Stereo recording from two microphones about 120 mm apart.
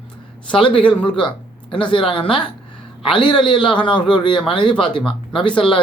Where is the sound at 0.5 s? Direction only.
45° left (ahead or behind).